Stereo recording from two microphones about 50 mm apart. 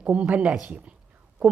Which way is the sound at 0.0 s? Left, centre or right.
Right.